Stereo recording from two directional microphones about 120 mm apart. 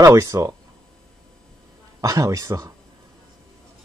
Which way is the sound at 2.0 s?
25° right (ahead or behind).